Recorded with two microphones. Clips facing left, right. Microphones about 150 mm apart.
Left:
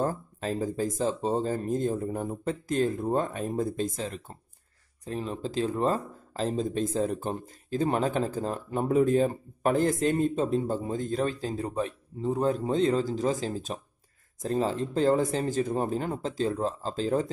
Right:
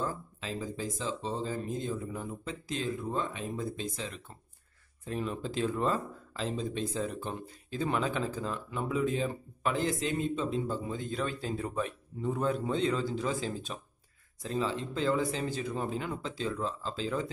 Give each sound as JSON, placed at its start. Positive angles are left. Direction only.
{"t": 0.0, "sound": "speech", "side_deg": 45}